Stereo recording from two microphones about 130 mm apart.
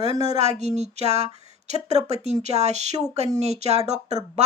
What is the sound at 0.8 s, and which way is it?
Speech, 55° right (ahead or behind).